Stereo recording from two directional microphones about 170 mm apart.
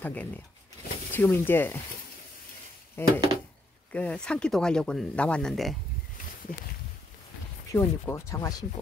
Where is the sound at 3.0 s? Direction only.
15° left (ahead or behind).